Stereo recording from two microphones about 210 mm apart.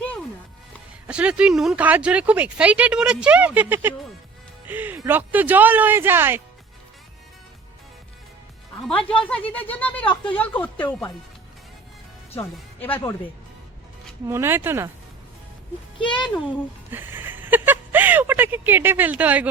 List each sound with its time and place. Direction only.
1.0 s speech: 5° right (ahead or behind)
8.7 s speech: 5° left (ahead or behind)
12.4 s speech: 10° left (ahead or behind)
14.3 s speech: 10° right (ahead or behind)
16.0 s speech: 25° left (ahead or behind)
16.9 s speech: 10° right (ahead or behind)